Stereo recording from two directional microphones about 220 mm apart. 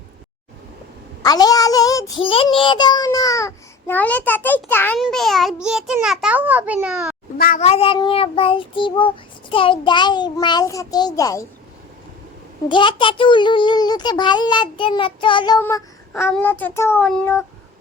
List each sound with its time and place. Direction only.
1.2 s a child's voice: 15° left (ahead or behind); by 7.2 s centre (ahead or behind)
7.3 s speech: 40° left (ahead or behind)
7.6 s child singing: 25° left (ahead or behind)
12.6 s child singing: 20° left (ahead or behind)
15.6 s a child's voice: 10° left (ahead or behind)